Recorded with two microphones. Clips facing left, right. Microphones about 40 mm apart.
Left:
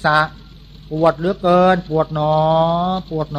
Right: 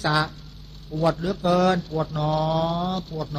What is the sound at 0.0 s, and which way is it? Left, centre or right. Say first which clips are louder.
Speech: left 8 dB; left.